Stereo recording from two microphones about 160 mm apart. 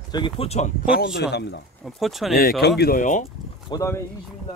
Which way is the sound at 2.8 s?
60° left (ahead or behind).